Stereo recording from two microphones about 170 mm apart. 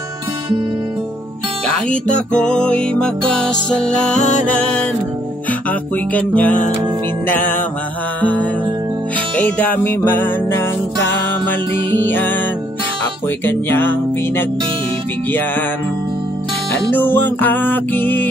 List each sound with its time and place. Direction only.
2.3 s music: 5° left (ahead or behind)
4.1 s music: 45° left (ahead or behind)
5.5 s music: 10° left (ahead or behind)
13.5 s music: 10° left (ahead or behind)
16.9 s music: 10° left (ahead or behind)